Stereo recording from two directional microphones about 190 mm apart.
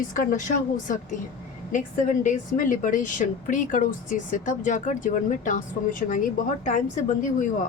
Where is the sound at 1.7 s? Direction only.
40° left (ahead or behind).